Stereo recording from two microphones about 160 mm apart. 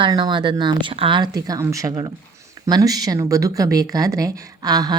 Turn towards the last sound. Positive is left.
turn(degrees=-25)  # may be behind; listen again after turning